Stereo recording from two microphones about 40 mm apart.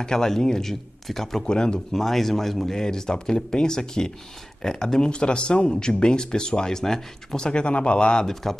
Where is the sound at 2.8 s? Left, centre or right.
Centre.